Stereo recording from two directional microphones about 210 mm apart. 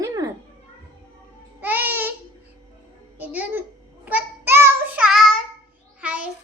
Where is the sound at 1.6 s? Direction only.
10° right (ahead or behind).